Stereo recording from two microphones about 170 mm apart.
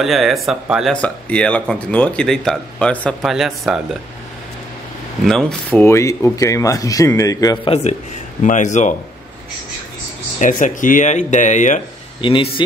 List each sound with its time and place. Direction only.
0.0 s speech: centre (ahead or behind)
5.2 s a man's voice: 5° left (ahead or behind); by 7.7 s 20° left (ahead or behind)
8.4 s speech: 45° left (ahead or behind)
10.4 s speech: 50° left (ahead or behind)
12.2 s a man's voice: 30° left (ahead or behind)